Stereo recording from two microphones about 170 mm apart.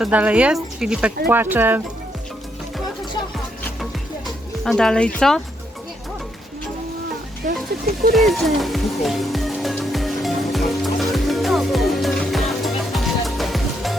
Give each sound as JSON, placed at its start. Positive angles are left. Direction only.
{"t": 0.0, "sound": "speech", "side_deg": -10}
{"t": 4.6, "sound": "speech", "side_deg": 5}
{"t": 7.4, "sound": "speech", "side_deg": -50}
{"t": 8.1, "sound": "music", "side_deg": 0}